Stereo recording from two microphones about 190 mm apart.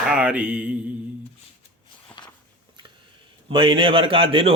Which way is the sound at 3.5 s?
25° right (ahead or behind).